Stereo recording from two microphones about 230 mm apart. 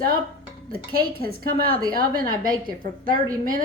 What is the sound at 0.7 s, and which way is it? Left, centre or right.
A woman's voice, right.